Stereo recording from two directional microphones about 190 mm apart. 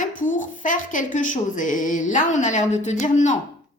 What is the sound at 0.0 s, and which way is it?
A woman's voice, 45° left (ahead or behind).